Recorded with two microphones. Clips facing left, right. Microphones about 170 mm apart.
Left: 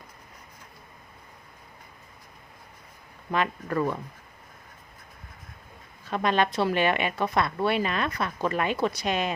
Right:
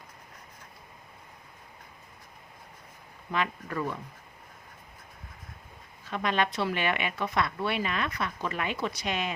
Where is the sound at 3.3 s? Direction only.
50° left (ahead or behind).